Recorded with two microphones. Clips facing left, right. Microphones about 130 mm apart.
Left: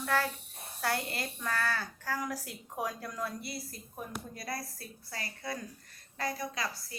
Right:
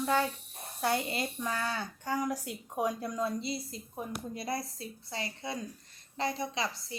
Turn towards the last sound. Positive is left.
turn(degrees=-25)  # may be behind; listen again after turning